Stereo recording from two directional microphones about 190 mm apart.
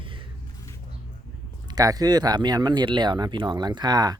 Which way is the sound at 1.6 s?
20° right (ahead or behind).